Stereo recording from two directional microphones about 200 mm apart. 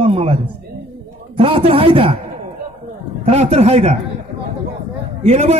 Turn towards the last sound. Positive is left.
turn(degrees=-35)  # may be behind; listen again after turning